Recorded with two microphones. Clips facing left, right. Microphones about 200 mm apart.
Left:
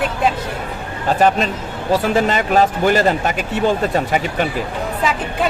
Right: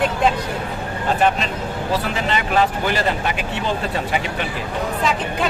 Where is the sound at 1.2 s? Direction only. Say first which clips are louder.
Left 5 dB; 40° left (ahead or behind).